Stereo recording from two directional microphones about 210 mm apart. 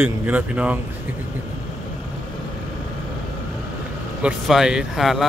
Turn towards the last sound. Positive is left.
turn(degrees=0)  # may be behind; listen again after turning